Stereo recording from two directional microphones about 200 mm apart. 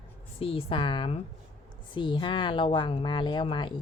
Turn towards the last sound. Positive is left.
turn(degrees=25)  # may be behind; listen again after turning